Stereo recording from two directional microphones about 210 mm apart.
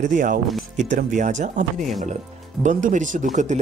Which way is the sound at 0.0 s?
40° right (ahead or behind).